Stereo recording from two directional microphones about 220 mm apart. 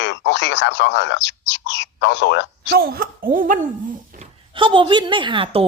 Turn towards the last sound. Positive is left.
turn(degrees=-20)  # may be behind; listen again after turning